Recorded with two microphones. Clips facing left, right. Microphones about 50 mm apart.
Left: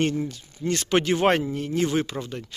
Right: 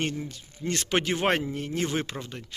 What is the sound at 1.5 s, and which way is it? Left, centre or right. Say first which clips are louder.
Speech: left 5 dB; right.